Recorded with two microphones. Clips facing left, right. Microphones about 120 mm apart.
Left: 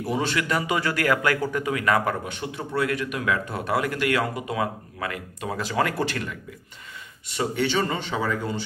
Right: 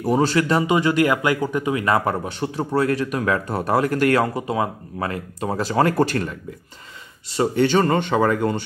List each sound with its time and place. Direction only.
0.0 s speech: 40° right (ahead or behind); by 8.6 s 60° right (ahead or behind)